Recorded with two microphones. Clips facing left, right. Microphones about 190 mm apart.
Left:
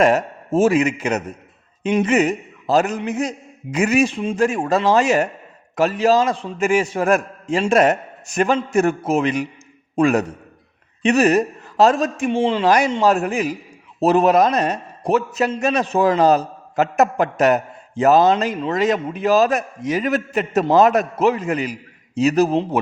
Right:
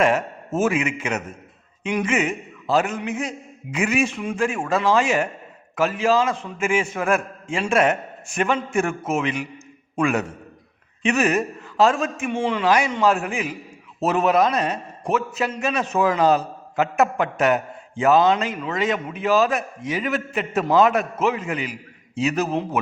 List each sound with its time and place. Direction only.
0.0 s a man's voice: 40° left (ahead or behind)
12.6 s a man's voice: 40° left (ahead or behind)